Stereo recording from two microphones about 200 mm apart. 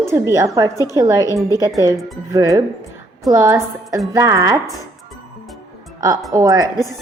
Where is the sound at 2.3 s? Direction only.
15° right (ahead or behind).